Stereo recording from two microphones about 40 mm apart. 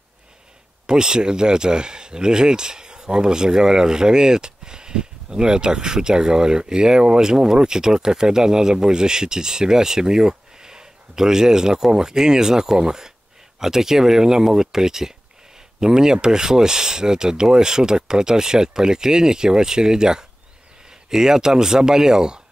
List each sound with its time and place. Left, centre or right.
0.8 s speech: centre